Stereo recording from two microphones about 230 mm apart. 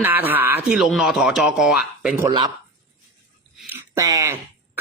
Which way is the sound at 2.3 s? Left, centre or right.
Centre.